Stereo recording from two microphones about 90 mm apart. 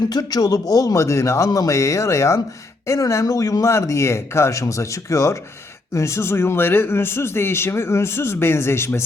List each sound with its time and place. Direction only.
0.1 s a man's voice: 45° left (ahead or behind); by 9.0 s 30° left (ahead or behind)